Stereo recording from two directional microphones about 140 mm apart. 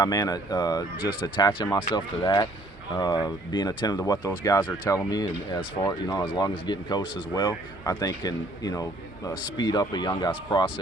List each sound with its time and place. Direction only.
0.0 s speech: 25° left (ahead or behind)